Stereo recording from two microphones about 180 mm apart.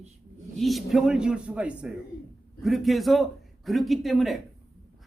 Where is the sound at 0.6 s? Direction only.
Centre (ahead or behind).